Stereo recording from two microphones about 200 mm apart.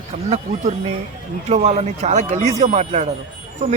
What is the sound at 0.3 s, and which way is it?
Speech, 35° right (ahead or behind).